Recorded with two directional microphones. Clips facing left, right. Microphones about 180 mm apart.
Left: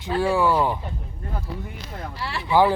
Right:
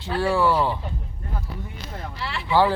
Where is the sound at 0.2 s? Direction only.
15° left (ahead or behind).